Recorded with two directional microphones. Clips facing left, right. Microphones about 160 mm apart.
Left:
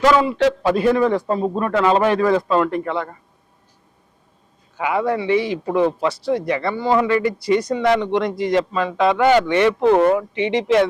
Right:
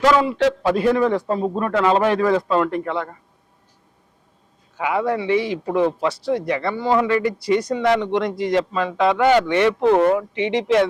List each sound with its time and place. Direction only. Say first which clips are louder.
0.0 s speech: left 1 dB; 10° left (ahead or behind)
4.8 s speech: left 1 dB; 15° left (ahead or behind)